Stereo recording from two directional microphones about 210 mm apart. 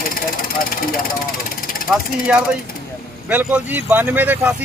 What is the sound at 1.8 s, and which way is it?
Mechanisms, centre (ahead or behind).